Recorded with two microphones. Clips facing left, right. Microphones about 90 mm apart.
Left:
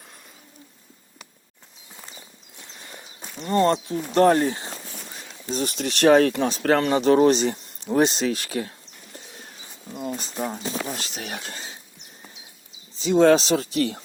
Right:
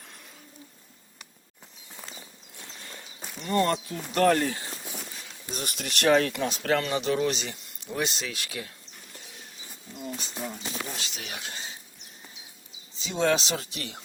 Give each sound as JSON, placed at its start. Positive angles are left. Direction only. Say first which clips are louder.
{"t": 2.0, "sound": "walk", "louder": "even", "side_deg": 5}
{"t": 2.6, "sound": "walk", "louder": "left 1 dB", "side_deg": 20}
{"t": 3.2, "sound": "horse", "louder": "left 3 dB", "side_deg": 0}
{"t": 3.4, "sound": "speech", "louder": "left 5 dB", "side_deg": 25}
{"t": 10.0, "sound": "a sound", "louder": "left 6 dB", "side_deg": 40}
{"t": 10.4, "sound": "speech", "louder": "left 8 dB", "side_deg": 40}
{"t": 13.0, "sound": "speech", "louder": "left 9 dB", "side_deg": 40}